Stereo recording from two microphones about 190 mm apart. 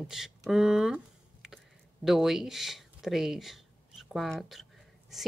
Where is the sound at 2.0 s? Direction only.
Centre (ahead or behind).